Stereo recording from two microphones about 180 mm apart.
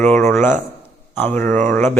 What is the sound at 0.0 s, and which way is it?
Speech, 10° left (ahead or behind).